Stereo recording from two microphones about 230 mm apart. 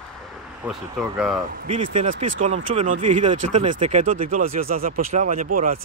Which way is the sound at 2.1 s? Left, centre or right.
Right.